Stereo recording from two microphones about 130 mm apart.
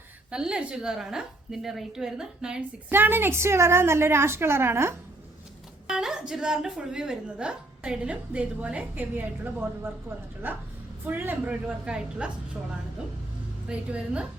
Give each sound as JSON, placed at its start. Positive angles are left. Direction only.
{"t": 0.3, "sound": "a woman's voice", "side_deg": -5}
{"t": 2.9, "sound": "a woman's voice", "side_deg": -15}
{"t": 5.9, "sound": "a woman's voice", "side_deg": -5}
{"t": 13.7, "sound": "a woman's voice", "side_deg": -10}